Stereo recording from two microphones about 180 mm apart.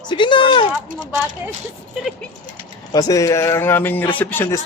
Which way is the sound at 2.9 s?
20° left (ahead or behind).